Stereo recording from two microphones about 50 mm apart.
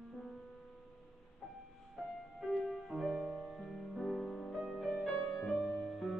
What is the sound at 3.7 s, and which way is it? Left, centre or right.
Music, centre.